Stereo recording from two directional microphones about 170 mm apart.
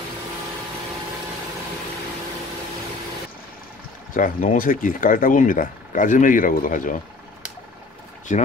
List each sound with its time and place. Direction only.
4.1 s speech: 50° left (ahead or behind)
8.3 s speech: 45° left (ahead or behind)